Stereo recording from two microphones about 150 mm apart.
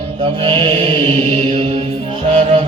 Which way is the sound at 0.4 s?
35° right (ahead or behind).